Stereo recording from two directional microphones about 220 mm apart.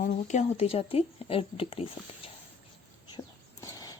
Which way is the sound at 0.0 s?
30° left (ahead or behind).